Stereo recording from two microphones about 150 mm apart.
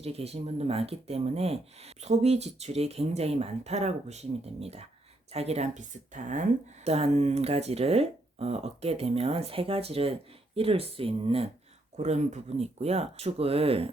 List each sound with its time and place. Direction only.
0.0 s speech: 40° right (ahead or behind)
11.9 s speech: 50° right (ahead or behind)